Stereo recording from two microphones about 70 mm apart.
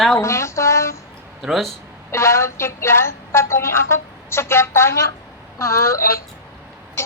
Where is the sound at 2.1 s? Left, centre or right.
Left.